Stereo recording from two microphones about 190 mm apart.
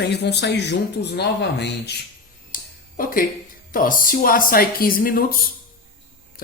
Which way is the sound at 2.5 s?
45° left (ahead or behind).